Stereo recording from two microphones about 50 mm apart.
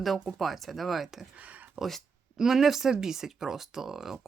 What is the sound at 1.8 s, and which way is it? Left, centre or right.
Speech, right.